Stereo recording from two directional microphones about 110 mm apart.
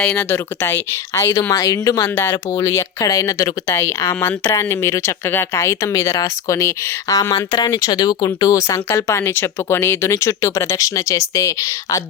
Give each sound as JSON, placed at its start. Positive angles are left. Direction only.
{"t": 0.0, "sound": "speech", "side_deg": 10}
{"t": 0.3, "sound": "speech", "side_deg": 20}
{"t": 2.0, "sound": "speech", "side_deg": 20}